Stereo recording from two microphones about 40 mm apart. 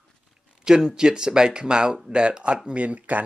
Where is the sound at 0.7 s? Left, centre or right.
Centre.